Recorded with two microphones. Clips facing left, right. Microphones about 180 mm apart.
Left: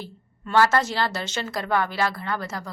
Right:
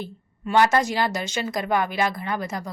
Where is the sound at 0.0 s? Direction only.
15° right (ahead or behind).